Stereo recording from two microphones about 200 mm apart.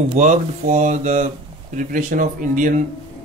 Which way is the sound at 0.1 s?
40° right (ahead or behind).